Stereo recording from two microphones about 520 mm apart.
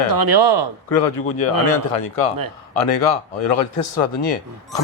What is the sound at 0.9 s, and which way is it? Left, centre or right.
Speech, left.